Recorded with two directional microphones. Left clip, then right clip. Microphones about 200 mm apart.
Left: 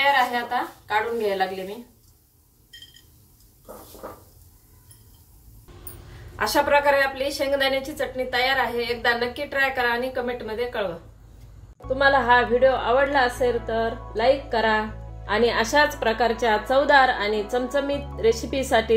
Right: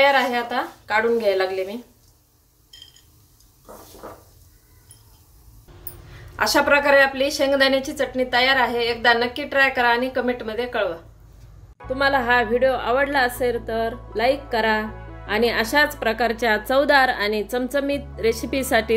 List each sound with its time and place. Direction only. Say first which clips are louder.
0.1 s a woman's voice: right 1 dB; 55° right (ahead or behind)
6.3 s a woman's voice: right 2 dB; 55° right (ahead or behind)
11.9 s a woman's voice: left 1 dB; 35° right (ahead or behind)